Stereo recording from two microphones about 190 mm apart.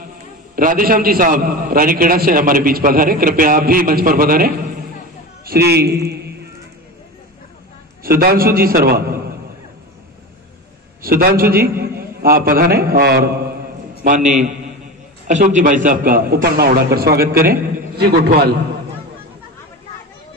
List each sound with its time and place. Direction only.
0.6 s a man's voice: 50° right (ahead or behind)
8.2 s a man's voice: 50° right (ahead or behind)
11.0 s a man's voice: 50° right (ahead or behind)
14.0 s a man's voice: 40° right (ahead or behind)